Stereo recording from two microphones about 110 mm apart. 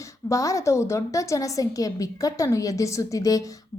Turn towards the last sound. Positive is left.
turn(degrees=30)  # may be behind; listen again after turning